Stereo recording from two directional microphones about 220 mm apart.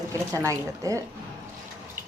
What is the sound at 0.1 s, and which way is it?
Speech, 15° right (ahead or behind).